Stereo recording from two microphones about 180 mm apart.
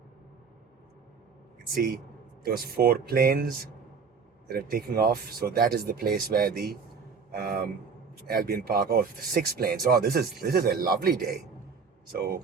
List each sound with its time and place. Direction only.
2.4 s speech: 60° right (ahead or behind)